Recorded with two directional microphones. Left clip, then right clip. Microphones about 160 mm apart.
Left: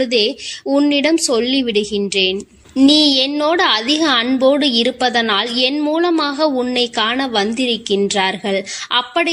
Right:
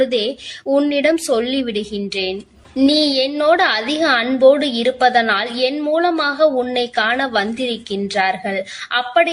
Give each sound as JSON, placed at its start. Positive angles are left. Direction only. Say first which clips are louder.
{"t": 0.0, "sound": "a woman's voice", "louder": "left 2 dB", "side_deg": 35}